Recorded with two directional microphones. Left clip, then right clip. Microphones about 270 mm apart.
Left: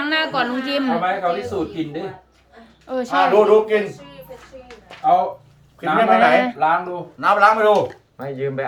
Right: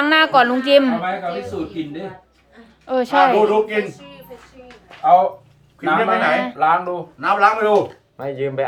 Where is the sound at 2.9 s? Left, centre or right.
Centre.